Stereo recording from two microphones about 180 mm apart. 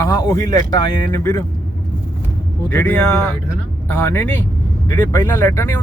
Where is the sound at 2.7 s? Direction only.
15° left (ahead or behind).